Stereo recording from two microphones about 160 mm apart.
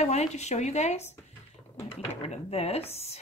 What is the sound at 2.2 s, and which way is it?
Speech, 40° left (ahead or behind).